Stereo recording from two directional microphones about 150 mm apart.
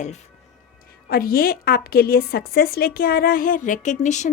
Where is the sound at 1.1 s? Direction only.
80° left.